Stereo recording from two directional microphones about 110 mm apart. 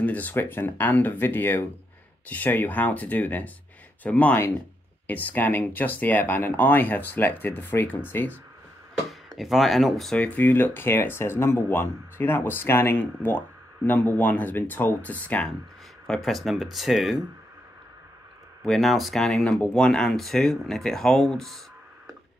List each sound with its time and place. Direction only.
0.0 s speech: 15° left (ahead or behind)
9.4 s speech: centre (ahead or behind)
16.1 s speech: centre (ahead or behind)
18.6 s speech: centre (ahead or behind)